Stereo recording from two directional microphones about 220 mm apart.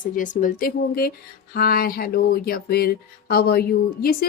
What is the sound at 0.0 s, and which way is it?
A woman's voice, 35° left (ahead or behind).